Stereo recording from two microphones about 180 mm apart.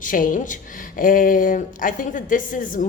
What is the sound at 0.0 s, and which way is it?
Speech, 45° left (ahead or behind).